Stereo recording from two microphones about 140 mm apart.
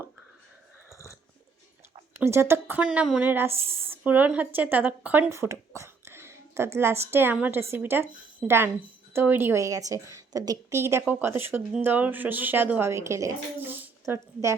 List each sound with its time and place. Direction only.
2.1 s speech: 20° right (ahead or behind)